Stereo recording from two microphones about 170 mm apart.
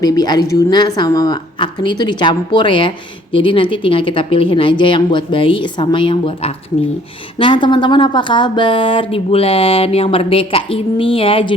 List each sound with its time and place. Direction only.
0.0 s speech: 25° left (ahead or behind)